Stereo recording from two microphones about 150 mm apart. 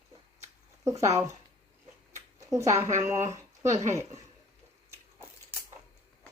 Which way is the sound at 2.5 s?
20° right (ahead or behind).